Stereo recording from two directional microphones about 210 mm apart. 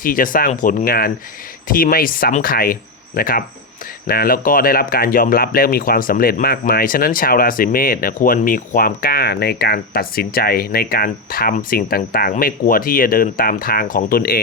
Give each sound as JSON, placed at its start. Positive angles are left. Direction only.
{"t": 0.0, "sound": "speech", "side_deg": 40}